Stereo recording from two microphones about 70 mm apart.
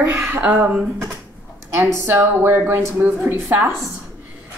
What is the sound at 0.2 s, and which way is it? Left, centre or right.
Speech, right.